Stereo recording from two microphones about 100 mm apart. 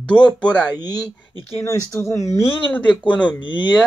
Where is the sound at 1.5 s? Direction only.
30° left (ahead or behind).